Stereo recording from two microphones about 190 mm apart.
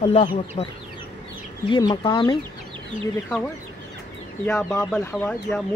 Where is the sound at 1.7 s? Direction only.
25° left (ahead or behind).